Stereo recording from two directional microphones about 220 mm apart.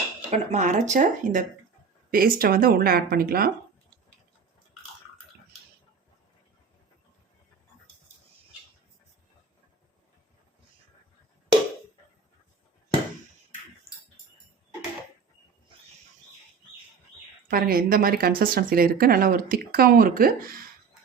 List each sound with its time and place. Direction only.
0.3 s speech: 35° right (ahead or behind)
17.5 s speech: 40° right (ahead or behind)